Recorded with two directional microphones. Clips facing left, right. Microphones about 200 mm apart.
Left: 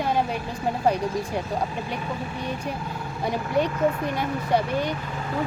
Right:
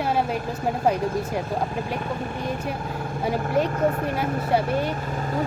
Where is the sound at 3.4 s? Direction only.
45° right (ahead or behind).